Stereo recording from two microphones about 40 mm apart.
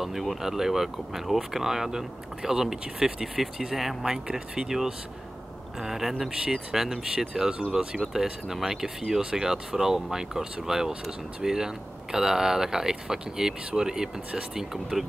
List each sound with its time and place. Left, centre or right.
0.0 s speech: centre
4.0 s speech: centre
5.8 s speech: centre